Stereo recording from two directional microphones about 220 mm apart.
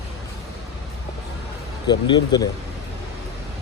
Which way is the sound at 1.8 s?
20° left (ahead or behind).